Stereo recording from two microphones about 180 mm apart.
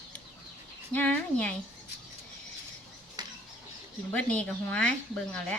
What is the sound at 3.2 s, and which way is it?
Bird, 25° right (ahead or behind).